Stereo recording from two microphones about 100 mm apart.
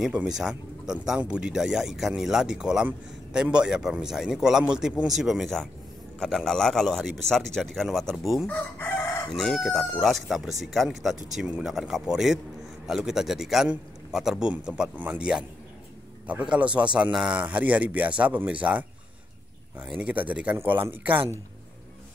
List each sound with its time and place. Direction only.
0.0 s a man's voice: 5° right (ahead or behind)
8.5 s chicken: 20° left (ahead or behind)
9.3 s a man's voice: centre (ahead or behind); by 21.3 s 20° right (ahead or behind)